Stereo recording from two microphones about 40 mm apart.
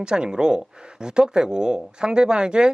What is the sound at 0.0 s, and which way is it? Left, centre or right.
Speech, centre.